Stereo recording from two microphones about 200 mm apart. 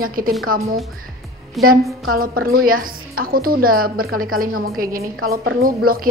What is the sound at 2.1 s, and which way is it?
A woman's voice, 45° right (ahead or behind).